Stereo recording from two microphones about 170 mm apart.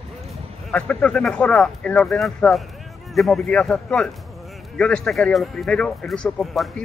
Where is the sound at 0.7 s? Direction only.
5° left (ahead or behind).